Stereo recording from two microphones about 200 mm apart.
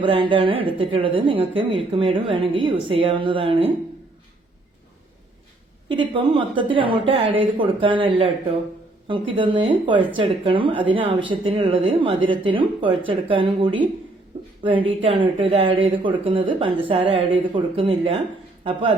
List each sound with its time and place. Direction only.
0.0 s speech: 25° right (ahead or behind)
5.9 s speech: 25° right (ahead or behind)